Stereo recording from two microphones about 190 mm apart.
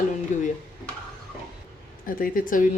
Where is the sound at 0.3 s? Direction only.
40° left (ahead or behind).